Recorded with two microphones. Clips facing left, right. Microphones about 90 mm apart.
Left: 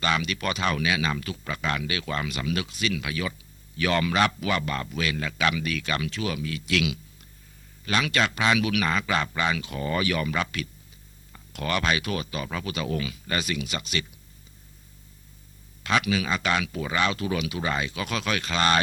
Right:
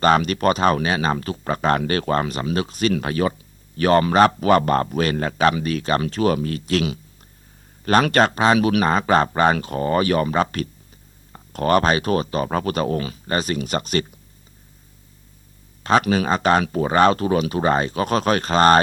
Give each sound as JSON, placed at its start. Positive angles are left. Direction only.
{"t": 0.0, "sound": "speech", "side_deg": -40}
{"t": 15.8, "sound": "speech", "side_deg": -40}